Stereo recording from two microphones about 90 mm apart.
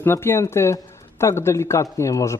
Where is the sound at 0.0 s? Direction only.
25° left (ahead or behind).